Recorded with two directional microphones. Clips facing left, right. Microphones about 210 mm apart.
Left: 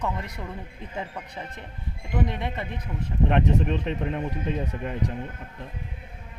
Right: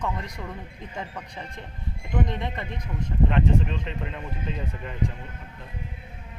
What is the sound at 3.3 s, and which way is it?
A man's voice, 55° left (ahead or behind).